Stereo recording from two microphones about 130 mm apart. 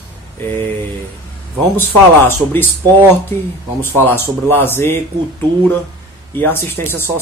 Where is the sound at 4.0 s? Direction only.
15° left (ahead or behind).